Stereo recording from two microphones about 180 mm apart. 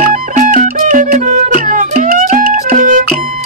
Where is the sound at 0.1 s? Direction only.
45° right (ahead or behind).